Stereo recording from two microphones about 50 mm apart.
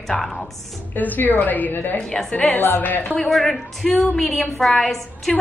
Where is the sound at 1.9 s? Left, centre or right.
Centre.